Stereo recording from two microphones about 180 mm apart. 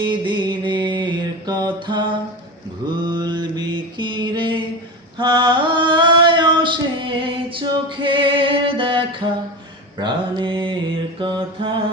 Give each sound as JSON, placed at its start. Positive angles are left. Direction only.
{"t": 0.0, "sound": "mantra", "side_deg": -25}
{"t": 3.1, "sound": "music", "side_deg": -25}
{"t": 5.1, "sound": "a sound", "side_deg": -25}
{"t": 10.0, "sound": "mantra", "side_deg": -25}